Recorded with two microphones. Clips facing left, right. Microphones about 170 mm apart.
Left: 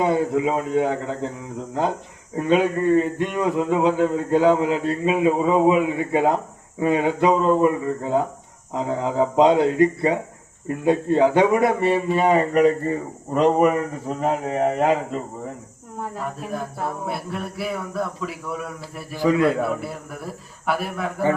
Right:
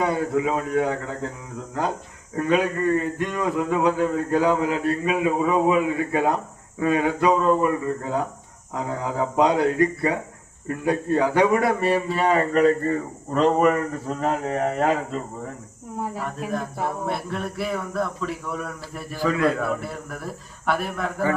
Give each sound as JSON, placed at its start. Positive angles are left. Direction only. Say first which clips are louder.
{"t": 0.0, "sound": "speech", "louder": "left 2 dB", "side_deg": 20}
{"t": 2.3, "sound": "a man's voice", "louder": "left 2 dB", "side_deg": 20}
{"t": 16.2, "sound": "speech", "louder": "right 1 dB", "side_deg": 5}
{"t": 19.2, "sound": "speech", "louder": "left 3 dB", "side_deg": 20}
{"t": 19.8, "sound": "speech", "louder": "left 1 dB", "side_deg": 5}